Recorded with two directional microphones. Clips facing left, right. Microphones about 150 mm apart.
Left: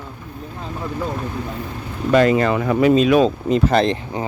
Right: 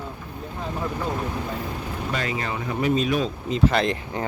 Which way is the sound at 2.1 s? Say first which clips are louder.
Left 15 dB; 50° left (ahead or behind).